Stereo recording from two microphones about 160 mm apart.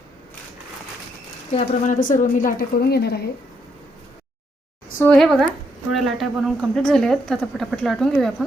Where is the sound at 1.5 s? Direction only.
50° left (ahead or behind); by 3.2 s 85° left.